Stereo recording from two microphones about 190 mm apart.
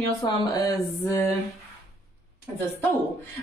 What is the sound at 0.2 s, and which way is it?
Speech, 20° left (ahead or behind).